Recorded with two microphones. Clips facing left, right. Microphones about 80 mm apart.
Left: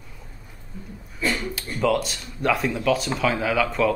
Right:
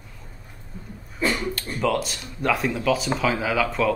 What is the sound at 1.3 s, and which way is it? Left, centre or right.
Speech, centre.